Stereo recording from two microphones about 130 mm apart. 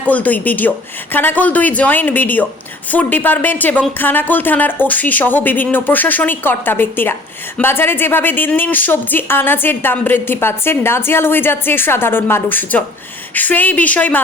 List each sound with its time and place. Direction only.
0.0 s a woman's voice: 10° left (ahead or behind)